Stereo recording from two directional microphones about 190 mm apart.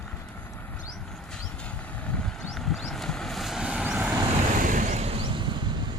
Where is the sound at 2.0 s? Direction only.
5° left (ahead or behind).